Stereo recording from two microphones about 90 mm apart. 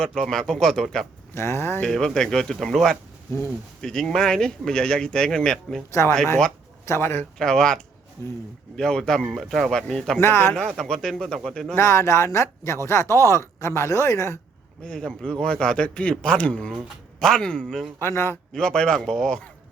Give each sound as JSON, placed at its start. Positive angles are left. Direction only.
{"t": 0.0, "sound": "speech", "side_deg": 5}
{"t": 1.3, "sound": "speech", "side_deg": 30}
{"t": 1.8, "sound": "speech", "side_deg": 5}
{"t": 5.9, "sound": "speech", "side_deg": 30}
{"t": 7.3, "sound": "speech", "side_deg": 5}
{"t": 8.2, "sound": "speech", "side_deg": 30}
{"t": 8.7, "sound": "speech", "side_deg": 5}
{"t": 10.2, "sound": "speech", "side_deg": 25}
{"t": 10.8, "sound": "speech", "side_deg": 5}
{"t": 11.8, "sound": "speech", "side_deg": 30}
{"t": 14.8, "sound": "speech", "side_deg": 10}
{"t": 18.0, "sound": "speech", "side_deg": 30}
{"t": 18.5, "sound": "speech", "side_deg": 10}